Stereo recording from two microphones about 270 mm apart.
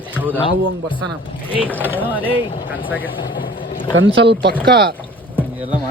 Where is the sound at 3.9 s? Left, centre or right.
Right.